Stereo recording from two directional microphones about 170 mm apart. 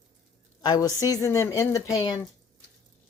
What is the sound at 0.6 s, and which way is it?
Speech, 20° left (ahead or behind).